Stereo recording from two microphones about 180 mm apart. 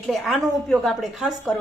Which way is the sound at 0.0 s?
Centre (ahead or behind).